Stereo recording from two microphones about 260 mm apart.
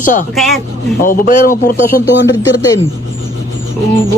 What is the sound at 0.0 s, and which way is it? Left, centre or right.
Speech, left.